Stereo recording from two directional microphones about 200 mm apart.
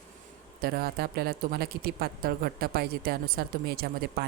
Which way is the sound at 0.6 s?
50° right (ahead or behind).